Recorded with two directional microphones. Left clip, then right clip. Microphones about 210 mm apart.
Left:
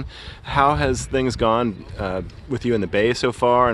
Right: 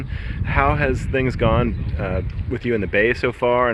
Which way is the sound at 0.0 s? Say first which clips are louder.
Right 2 dB; 20° left (ahead or behind).